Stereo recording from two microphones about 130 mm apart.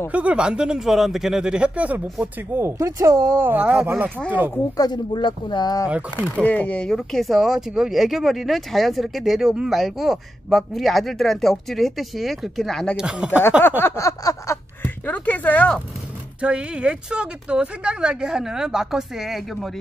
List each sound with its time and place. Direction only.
0.1 s speech: 10° right (ahead or behind)
4.7 s speech: 35° left (ahead or behind)
5.9 s speech: 10° right (ahead or behind)
6.4 s speech: 15° left (ahead or behind)
13.0 s speech: 10° right (ahead or behind)
13.6 s speech: 15° left (ahead or behind)
16.3 s speech: 10° right (ahead or behind)